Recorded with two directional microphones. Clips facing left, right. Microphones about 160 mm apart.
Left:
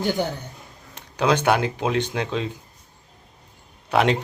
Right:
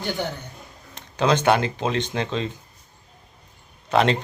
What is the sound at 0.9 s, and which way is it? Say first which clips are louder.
Speech: even; 10° left (ahead or behind).